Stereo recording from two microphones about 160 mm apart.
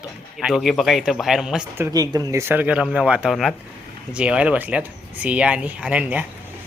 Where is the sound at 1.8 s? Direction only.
25° right (ahead or behind).